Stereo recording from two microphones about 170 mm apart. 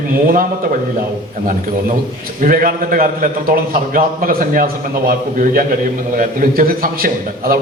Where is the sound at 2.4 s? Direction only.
55° right (ahead or behind).